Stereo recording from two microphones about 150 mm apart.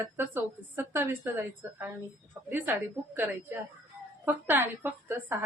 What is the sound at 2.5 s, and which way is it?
Speech, 15° right (ahead or behind).